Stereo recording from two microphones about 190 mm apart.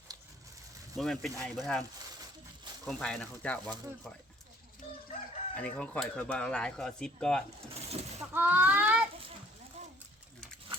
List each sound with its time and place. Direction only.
0.9 s speech: centre (ahead or behind)
2.8 s speech: 5° left (ahead or behind)
5.5 s speech: 5° left (ahead or behind)
7.7 s a sound: 35° right (ahead or behind)
8.3 s speech: 10° right (ahead or behind)
10.7 s a sound: 30° right (ahead or behind)